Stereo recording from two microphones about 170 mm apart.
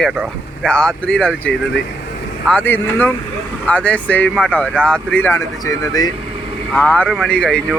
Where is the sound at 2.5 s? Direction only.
10° left (ahead or behind).